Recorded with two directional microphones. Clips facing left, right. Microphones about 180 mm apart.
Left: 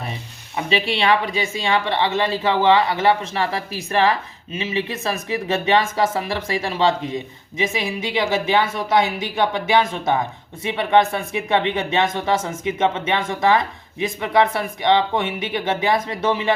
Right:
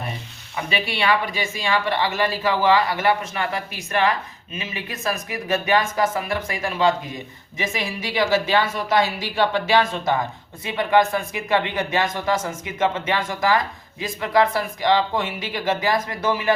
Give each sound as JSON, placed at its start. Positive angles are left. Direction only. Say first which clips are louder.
{"t": 0.7, "sound": "a woman's voice", "louder": "left 3 dB", "side_deg": 25}